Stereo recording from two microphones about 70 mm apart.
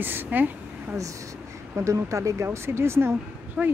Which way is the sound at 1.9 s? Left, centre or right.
Right.